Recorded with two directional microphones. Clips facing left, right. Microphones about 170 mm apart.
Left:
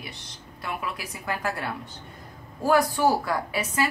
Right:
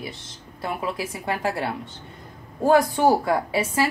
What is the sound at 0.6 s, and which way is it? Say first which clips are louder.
A woman's voice: right 5 dB; 30° right (ahead or behind).